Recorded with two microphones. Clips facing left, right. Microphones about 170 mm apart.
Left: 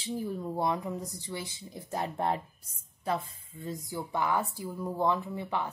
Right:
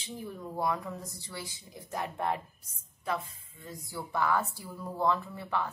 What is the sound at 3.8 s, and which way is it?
Speech, 20° left (ahead or behind).